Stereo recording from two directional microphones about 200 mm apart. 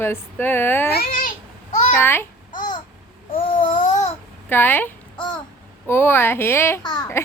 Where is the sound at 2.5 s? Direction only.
40° left (ahead or behind).